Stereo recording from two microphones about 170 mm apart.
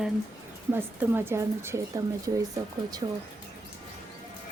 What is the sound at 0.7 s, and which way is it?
Speech, 15° right (ahead or behind).